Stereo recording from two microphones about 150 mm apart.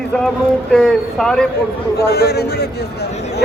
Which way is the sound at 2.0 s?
90° left.